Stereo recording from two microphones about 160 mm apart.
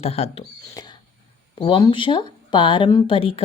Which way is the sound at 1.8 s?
30° left (ahead or behind).